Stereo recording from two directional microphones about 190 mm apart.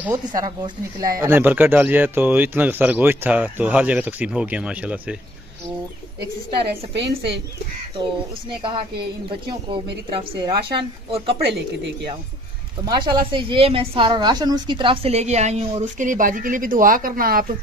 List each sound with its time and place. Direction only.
0.0 s a woman's voice: 20° right (ahead or behind)
6.9 s speech: 65° right (ahead or behind)
8.6 s a woman's voice: 25° right (ahead or behind)
11.2 s speech: 65° right (ahead or behind)
12.8 s a woman's voice: 25° right (ahead or behind); by 17.5 s 50° right (ahead or behind)